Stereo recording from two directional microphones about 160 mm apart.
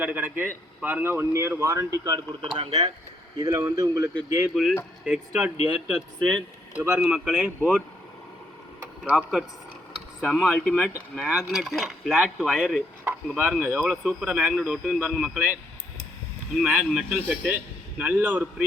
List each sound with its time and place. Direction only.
0.0 s a man's voice: 10° right (ahead or behind)
2.6 s speech: 40° right (ahead or behind)
3.3 s speech: 20° right (ahead or behind)
4.1 s speech: 5° left (ahead or behind)
5.0 s a man's voice: 5° right (ahead or behind)
6.7 s speech: 10° right (ahead or behind)
7.4 s a man's voice: 10° right (ahead or behind)
9.0 s a man's voice: 5° right (ahead or behind)
16.6 s a man's voice: 5° right (ahead or behind)